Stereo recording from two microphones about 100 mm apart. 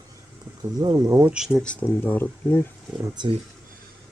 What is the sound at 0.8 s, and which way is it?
Speech, 40° right (ahead or behind).